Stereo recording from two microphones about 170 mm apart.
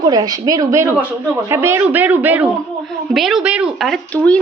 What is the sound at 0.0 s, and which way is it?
A woman's voice, 20° right (ahead or behind).